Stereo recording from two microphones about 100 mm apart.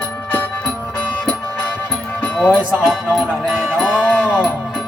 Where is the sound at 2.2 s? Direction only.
15° left (ahead or behind).